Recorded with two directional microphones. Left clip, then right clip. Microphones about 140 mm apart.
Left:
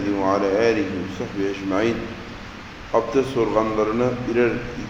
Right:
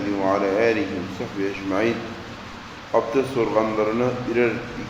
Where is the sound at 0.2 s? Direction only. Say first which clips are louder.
Even; 15° left (ahead or behind).